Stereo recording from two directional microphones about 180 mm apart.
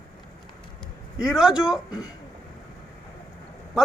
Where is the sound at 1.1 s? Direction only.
5° right (ahead or behind).